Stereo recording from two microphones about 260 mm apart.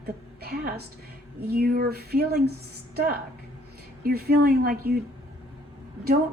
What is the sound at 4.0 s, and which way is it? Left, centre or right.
Speech, right.